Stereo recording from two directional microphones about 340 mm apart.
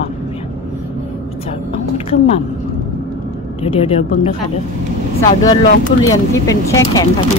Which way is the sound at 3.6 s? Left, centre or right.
Centre.